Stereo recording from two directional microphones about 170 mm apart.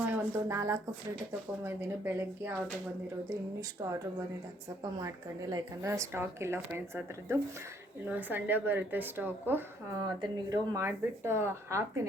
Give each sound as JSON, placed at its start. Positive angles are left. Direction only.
{"t": 0.1, "sound": "speech", "side_deg": -15}
{"t": 3.6, "sound": "speech", "side_deg": -20}
{"t": 10.2, "sound": "speech", "side_deg": -25}
{"t": 10.8, "sound": "speech", "side_deg": -15}